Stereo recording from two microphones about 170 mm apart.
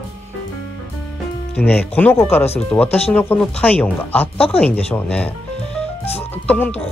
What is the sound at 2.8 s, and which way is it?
Speech, 35° left (ahead or behind).